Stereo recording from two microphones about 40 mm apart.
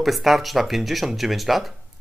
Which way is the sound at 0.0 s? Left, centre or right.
Centre.